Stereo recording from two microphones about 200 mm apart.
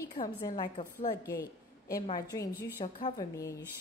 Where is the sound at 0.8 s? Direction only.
40° left (ahead or behind).